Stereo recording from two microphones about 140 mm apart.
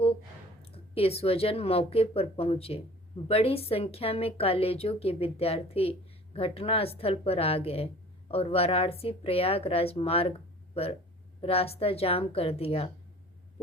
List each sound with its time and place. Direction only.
0.6 s a woman's voice: 45° left (ahead or behind)
11.3 s a woman's voice: 45° left (ahead or behind)